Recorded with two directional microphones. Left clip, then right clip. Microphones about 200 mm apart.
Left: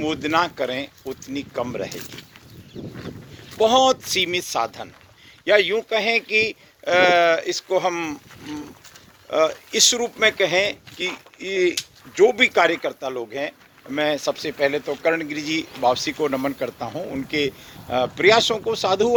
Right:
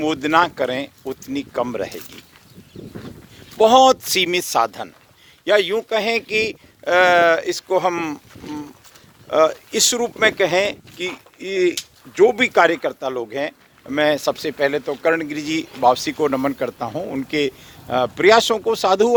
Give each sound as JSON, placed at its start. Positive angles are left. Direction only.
{"t": 0.0, "sound": "speech", "side_deg": -50}
{"t": 3.6, "sound": "speech", "side_deg": -50}
{"t": 5.5, "sound": "a man's voice", "side_deg": -25}
{"t": 9.3, "sound": "a man's voice", "side_deg": -45}